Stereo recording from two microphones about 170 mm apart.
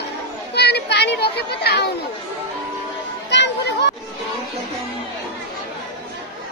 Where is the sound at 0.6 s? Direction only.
75° left (ahead or behind).